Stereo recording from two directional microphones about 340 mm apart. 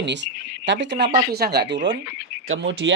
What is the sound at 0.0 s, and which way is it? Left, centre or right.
Speech, right.